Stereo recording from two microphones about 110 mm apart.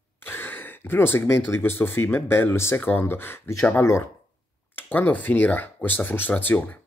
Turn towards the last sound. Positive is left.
turn(degrees=15)  # may be behind; listen again after turning